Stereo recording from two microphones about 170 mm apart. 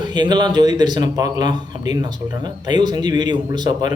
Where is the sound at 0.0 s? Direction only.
25° right (ahead or behind).